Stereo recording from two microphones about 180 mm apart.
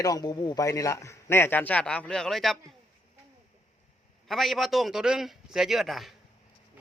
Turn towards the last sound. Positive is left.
turn(degrees=0)  # may be behind; listen again after turning